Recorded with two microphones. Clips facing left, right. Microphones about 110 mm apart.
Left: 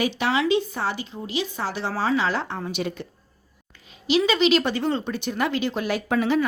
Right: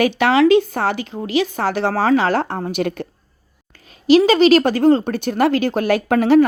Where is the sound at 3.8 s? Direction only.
45° right (ahead or behind).